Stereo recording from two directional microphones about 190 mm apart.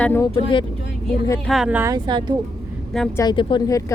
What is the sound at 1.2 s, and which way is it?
Speech, 5° left (ahead or behind).